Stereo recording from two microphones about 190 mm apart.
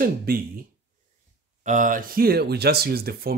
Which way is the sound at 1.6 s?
40° right (ahead or behind).